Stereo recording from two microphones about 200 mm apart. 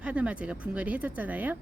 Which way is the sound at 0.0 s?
5° right (ahead or behind).